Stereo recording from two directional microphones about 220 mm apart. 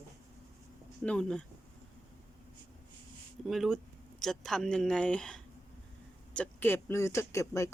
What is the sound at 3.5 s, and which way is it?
Speech, centre (ahead or behind).